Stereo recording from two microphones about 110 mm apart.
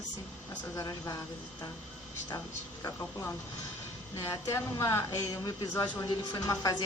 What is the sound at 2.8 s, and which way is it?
A woman's voice, 25° left (ahead or behind).